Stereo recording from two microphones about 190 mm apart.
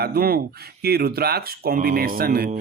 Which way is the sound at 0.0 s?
55° right (ahead or behind).